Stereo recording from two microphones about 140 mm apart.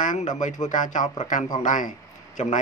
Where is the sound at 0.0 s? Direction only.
65° left (ahead or behind).